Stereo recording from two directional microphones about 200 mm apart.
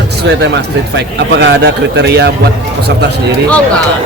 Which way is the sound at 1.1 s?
55° right (ahead or behind).